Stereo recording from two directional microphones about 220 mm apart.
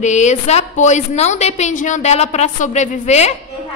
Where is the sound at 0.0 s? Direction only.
30° left (ahead or behind).